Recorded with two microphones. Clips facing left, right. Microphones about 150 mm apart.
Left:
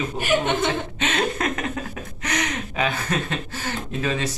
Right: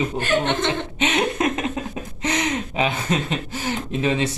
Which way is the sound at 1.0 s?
20° right (ahead or behind).